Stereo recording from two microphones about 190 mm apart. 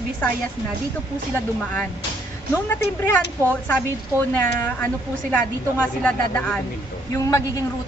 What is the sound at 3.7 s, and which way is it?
A woman's voice, 10° left (ahead or behind).